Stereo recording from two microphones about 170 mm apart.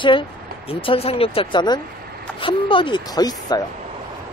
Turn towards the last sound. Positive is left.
turn(degrees=25)  # may be behind; listen again after turning